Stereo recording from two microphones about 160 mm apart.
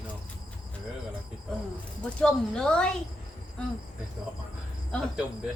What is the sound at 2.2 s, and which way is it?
Speech, 5° left (ahead or behind).